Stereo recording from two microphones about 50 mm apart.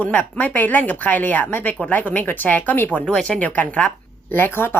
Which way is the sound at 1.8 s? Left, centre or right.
Left.